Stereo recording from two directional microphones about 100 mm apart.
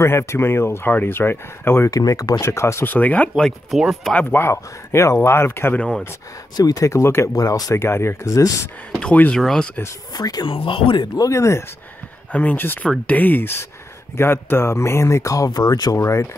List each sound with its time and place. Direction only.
0.0 s speech: 25° left (ahead or behind)
2.0 s speech: 35° left (ahead or behind)
2.4 s speech: 25° left (ahead or behind); by 3.5 s 10° left (ahead or behind)
3.7 s speech: centre (ahead or behind)
4.1 s speech: 20° left (ahead or behind)
5.8 s speech: 10° left (ahead or behind)
6.5 s speech: 40° left (ahead or behind)
7.8 s speech: 25° left (ahead or behind)
9.0 s speech: 10° left (ahead or behind)
10.1 s speech: 40° left (ahead or behind)
10.5 s speech: 65° left (ahead or behind)
11.1 s speech: 30° left (ahead or behind)
12.3 s speech: 15° left (ahead or behind)